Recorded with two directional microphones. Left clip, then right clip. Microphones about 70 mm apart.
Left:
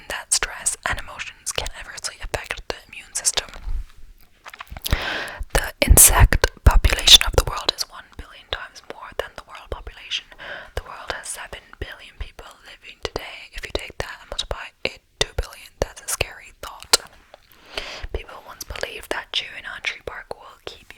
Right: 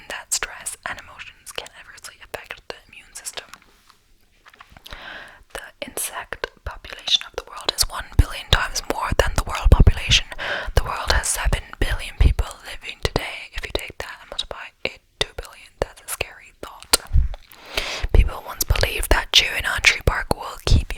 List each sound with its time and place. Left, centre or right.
0.1 s whispering: centre
0.6 s whispering: left
4.4 s a sound: left
4.8 s whispering: left
7.9 s whispering: right; by 17.1 s centre
17.3 s whispering: centre
19.3 s whispering: right